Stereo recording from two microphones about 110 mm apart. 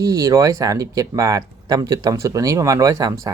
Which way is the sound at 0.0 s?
30° right (ahead or behind).